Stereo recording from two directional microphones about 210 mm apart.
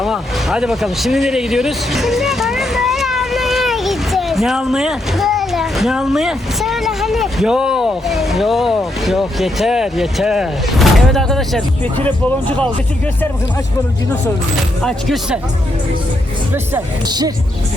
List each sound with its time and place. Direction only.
0.0 s speech: centre (ahead or behind)
14.5 s speech: centre (ahead or behind)
16.7 s speech: 20° right (ahead or behind)